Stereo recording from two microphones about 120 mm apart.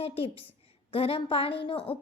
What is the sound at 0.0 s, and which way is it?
A woman's voice, 50° left (ahead or behind).